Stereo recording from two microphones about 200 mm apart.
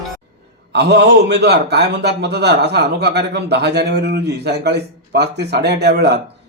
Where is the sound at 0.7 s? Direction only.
55° right (ahead or behind).